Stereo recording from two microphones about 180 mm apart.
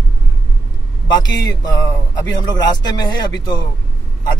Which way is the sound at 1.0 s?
25° left (ahead or behind).